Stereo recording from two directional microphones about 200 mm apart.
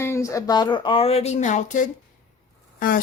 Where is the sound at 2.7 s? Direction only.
45° left (ahead or behind).